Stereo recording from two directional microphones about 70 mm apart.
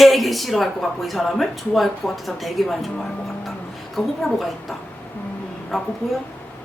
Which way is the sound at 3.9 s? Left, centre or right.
Centre.